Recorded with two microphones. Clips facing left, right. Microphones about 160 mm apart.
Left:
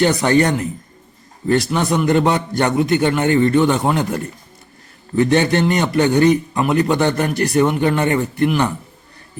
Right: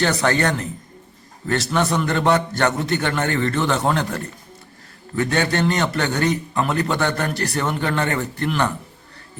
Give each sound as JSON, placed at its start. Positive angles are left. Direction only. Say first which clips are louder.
{"t": 0.0, "sound": "a man's voice", "louder": "left 5 dB", "side_deg": 15}